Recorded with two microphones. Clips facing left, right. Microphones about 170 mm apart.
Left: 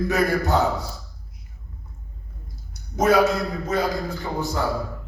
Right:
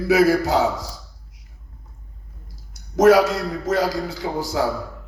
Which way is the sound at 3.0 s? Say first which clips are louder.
Right 4 dB; 90° right.